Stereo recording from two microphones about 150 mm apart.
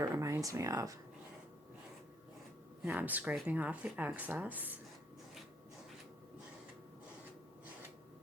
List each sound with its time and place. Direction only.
0.0 s speech: 20° right (ahead or behind)
2.8 s speech: 10° right (ahead or behind)